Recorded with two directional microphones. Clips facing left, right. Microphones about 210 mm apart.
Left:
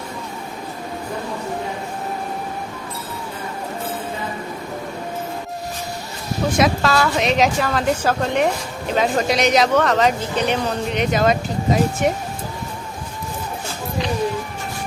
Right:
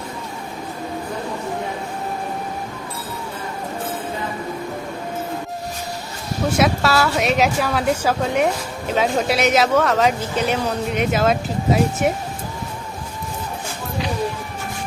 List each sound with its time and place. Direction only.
6.6 s a woman's voice: 5° right (ahead or behind)